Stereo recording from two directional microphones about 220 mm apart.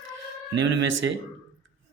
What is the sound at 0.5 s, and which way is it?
Speech, 55° right (ahead or behind).